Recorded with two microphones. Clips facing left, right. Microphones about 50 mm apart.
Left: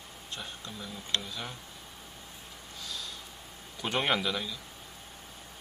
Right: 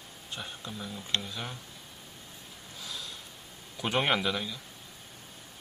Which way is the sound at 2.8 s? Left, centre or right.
Centre.